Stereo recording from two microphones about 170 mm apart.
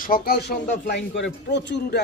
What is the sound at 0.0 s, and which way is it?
Speech, 60° left (ahead or behind).